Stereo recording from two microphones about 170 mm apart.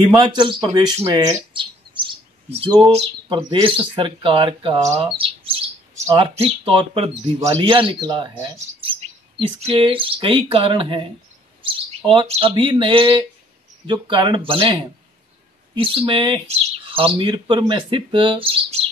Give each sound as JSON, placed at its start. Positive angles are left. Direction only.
{"t": 0.1, "sound": "speech", "side_deg": -25}
{"t": 4.8, "sound": "chirp", "side_deg": -35}
{"t": 6.1, "sound": "speech", "side_deg": -35}